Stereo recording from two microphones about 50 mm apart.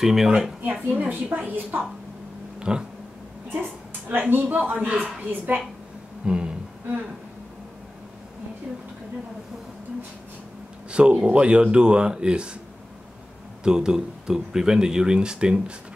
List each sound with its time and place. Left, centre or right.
0.0 s speech: centre
0.6 s a woman's voice: right
2.7 s speech: centre
4.1 s a woman's voice: right
6.2 s a sound: centre
10.9 s speech: right
13.7 s speech: centre